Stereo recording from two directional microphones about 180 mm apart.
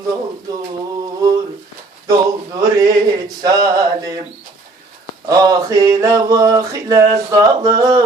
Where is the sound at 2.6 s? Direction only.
20° right (ahead or behind).